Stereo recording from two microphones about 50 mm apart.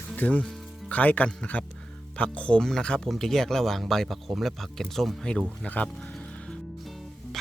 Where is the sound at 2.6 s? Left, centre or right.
Centre.